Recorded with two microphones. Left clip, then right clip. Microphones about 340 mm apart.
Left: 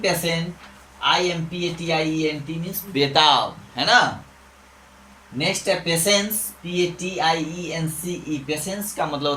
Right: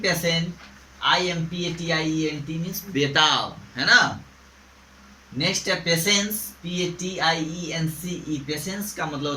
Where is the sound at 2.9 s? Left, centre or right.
Centre.